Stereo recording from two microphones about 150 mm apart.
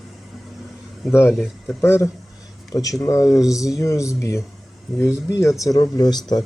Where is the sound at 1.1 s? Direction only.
15° left (ahead or behind).